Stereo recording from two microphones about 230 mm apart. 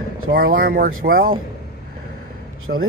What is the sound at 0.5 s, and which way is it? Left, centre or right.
Speech, right.